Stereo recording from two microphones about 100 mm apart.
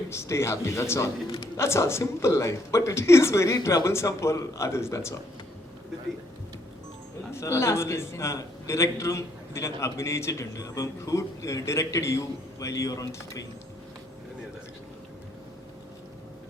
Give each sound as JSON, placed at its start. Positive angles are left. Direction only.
{"t": 0.1, "sound": "a man's voice", "side_deg": 25}
{"t": 7.3, "sound": "a man's voice", "side_deg": 30}